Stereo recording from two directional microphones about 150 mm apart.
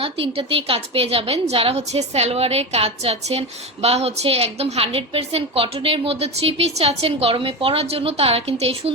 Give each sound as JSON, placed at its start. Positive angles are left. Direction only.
{"t": 0.0, "sound": "a woman's voice", "side_deg": -40}